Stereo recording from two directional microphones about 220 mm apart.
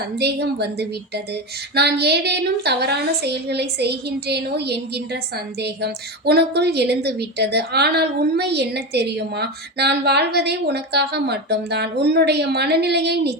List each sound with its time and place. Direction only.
0.2 s a woman's voice: 50° right (ahead or behind)